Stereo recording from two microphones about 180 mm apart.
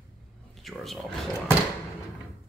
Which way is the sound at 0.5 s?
Centre (ahead or behind).